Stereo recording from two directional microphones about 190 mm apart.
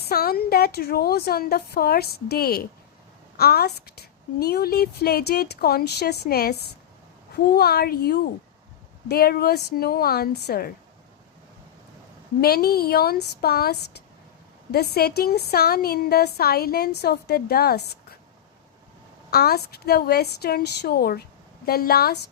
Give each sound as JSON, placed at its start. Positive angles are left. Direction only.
{"t": 0.0, "sound": "a woman's voice", "side_deg": 55}
{"t": 12.4, "sound": "a woman's voice", "side_deg": 55}
{"t": 19.3, "sound": "a woman's voice", "side_deg": 55}